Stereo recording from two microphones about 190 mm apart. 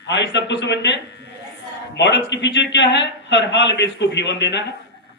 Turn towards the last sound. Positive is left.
turn(degrees=65)  # may be behind; listen again after turning